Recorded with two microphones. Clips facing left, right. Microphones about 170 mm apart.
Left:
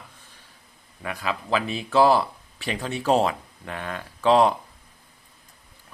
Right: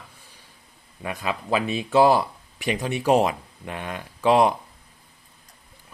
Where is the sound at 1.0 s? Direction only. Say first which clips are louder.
Right 1 dB; 20° right (ahead or behind).